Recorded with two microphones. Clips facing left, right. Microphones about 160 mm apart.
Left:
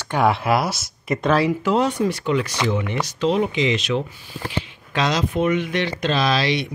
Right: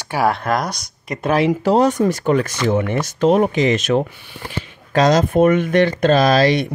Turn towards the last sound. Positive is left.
turn(degrees=-45)  # may be behind; listen again after turning